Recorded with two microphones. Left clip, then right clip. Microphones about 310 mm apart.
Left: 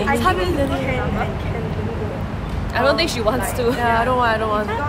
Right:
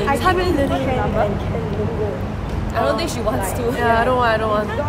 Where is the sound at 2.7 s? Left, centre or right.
Left.